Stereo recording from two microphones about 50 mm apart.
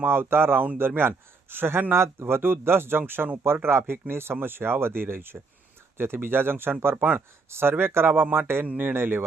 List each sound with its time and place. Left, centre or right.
0.0 s speech: right
2.2 s speech: right
8.6 s speech: right